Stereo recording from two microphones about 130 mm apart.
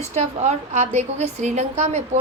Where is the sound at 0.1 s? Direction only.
60° right (ahead or behind).